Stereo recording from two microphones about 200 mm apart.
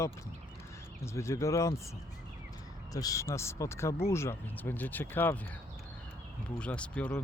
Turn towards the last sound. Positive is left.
turn(degrees=5)  # may be behind; listen again after turning